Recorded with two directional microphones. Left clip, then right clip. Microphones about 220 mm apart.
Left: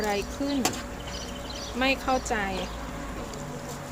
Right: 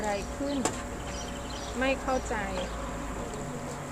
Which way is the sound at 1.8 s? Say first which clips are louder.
Left 3 dB; 60° left (ahead or behind).